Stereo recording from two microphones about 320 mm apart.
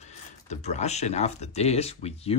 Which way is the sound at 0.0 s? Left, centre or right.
Left.